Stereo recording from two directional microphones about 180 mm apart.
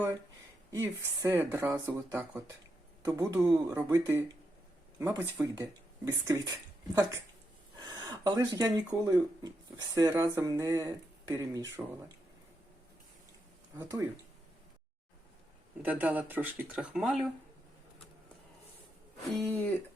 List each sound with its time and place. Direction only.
0.7 s speech: 15° right (ahead or behind)
13.7 s speech: 15° right (ahead or behind)
15.8 s speech: 10° right (ahead or behind)
19.3 s speech: 5° left (ahead or behind)